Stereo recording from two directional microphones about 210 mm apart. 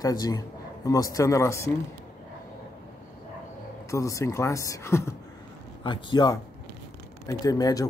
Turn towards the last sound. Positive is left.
turn(degrees=15)  # may be behind; listen again after turning